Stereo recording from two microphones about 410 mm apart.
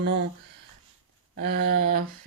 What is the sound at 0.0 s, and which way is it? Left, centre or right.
Speech, right.